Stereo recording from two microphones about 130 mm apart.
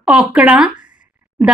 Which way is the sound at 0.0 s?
5° right (ahead or behind).